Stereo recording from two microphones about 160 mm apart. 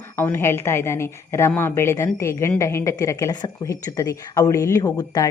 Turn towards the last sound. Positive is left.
turn(degrees=25)  # may be behind; listen again after turning